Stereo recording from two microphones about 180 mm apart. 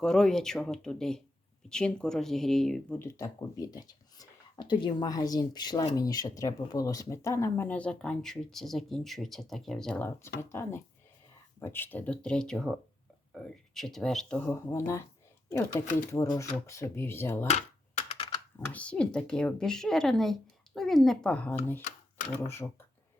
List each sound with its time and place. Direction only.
0.0 s speech: 5° left (ahead or behind)
3.0 s speech: 15° left (ahead or behind)
17.5 s computer keyboard: 35° left (ahead or behind)
18.7 s speech: 5° left (ahead or behind)
21.8 s typewriter: 45° left (ahead or behind)
22.4 s speech: 15° left (ahead or behind)